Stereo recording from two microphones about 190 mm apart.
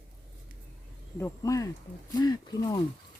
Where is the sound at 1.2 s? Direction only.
15° left (ahead or behind).